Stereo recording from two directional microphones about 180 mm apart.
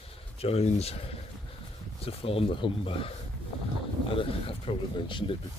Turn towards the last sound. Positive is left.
turn(degrees=25)  # may be behind; listen again after turning